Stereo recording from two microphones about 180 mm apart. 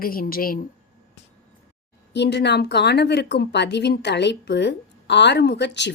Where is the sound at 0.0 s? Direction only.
55° left (ahead or behind).